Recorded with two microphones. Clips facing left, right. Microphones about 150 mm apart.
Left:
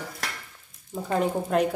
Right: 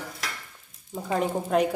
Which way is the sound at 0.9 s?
Centre (ahead or behind).